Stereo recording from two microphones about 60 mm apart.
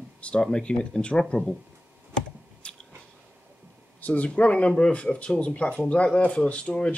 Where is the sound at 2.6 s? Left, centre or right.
Centre.